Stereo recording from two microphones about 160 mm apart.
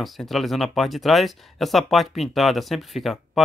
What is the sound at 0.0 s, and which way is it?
Speech, centre (ahead or behind).